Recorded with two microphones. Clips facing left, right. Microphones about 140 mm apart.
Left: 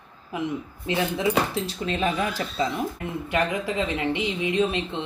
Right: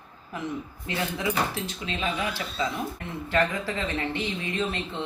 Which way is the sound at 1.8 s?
40° left (ahead or behind).